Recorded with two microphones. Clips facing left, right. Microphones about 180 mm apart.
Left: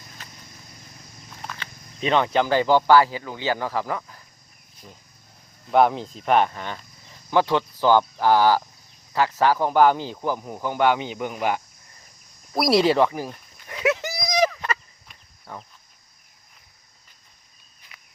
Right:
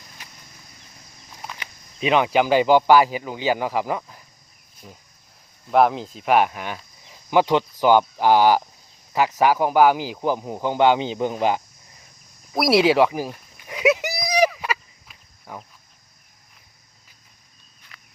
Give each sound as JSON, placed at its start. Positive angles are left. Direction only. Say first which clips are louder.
{"t": 0.2, "sound": "horse", "louder": "left 1 dB", "side_deg": -10}
{"t": 1.4, "sound": "speech", "louder": "even", "side_deg": -10}
{"t": 5.7, "sound": "speech", "louder": "right 1 dB", "side_deg": 0}
{"t": 12.5, "sound": "speech", "louder": "right 2 dB", "side_deg": 0}
{"t": 13.1, "sound": "a sound", "louder": "right 3 dB", "side_deg": -10}